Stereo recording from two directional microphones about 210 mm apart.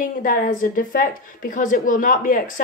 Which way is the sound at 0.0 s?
40° left (ahead or behind).